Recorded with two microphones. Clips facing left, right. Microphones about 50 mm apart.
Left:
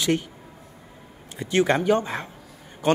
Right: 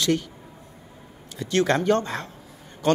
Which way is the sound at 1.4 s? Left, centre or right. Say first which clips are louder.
Left 1 dB; centre.